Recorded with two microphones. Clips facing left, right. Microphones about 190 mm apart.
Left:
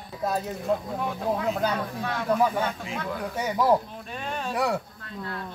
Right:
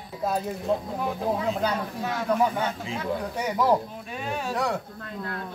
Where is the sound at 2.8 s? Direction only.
30° right (ahead or behind).